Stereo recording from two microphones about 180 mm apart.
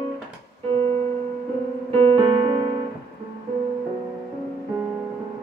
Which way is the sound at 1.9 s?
30° right (ahead or behind).